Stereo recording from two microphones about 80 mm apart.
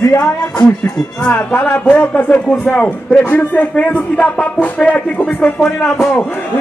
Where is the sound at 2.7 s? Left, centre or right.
Centre.